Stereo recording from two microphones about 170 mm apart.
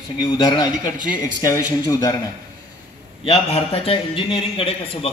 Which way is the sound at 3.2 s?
35° left (ahead or behind).